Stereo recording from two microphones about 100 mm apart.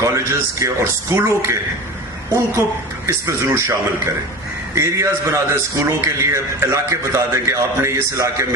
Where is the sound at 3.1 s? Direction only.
30° right (ahead or behind).